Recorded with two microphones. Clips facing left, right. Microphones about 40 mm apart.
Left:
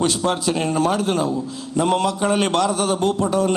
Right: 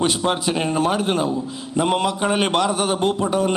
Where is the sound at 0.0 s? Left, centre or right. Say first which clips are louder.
Even; right.